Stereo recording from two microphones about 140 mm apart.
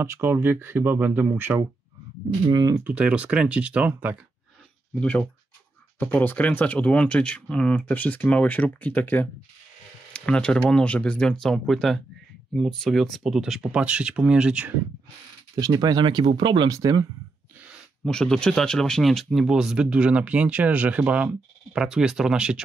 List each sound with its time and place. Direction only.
0.0 s speech: 20° right (ahead or behind)
2.4 s speech: 30° right (ahead or behind)
2.8 s speech: 10° right (ahead or behind)
5.9 s speech: 10° left (ahead or behind); by 14.7 s 10° right (ahead or behind)
15.5 s speech: 30° right (ahead or behind)
18.0 s speech: 5° left (ahead or behind)